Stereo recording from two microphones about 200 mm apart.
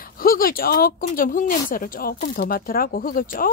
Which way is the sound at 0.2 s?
45° left (ahead or behind).